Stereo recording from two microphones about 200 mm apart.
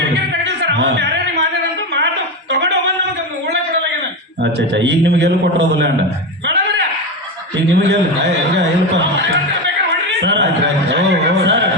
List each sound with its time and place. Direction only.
0.4 s music: 60° right (ahead or behind)
2.5 s singing: 60° right (ahead or behind)
4.4 s a man's voice: 60° right (ahead or behind)
6.4 s music: 60° right (ahead or behind)
7.5 s a man's voice: 60° right (ahead or behind)
10.2 s speech: 60° right (ahead or behind)